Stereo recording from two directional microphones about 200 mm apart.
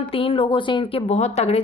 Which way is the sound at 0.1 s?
30° left (ahead or behind).